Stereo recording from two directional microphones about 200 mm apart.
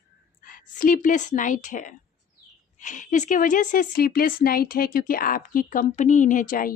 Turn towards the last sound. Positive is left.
turn(degrees=45)  # may be behind; listen again after turning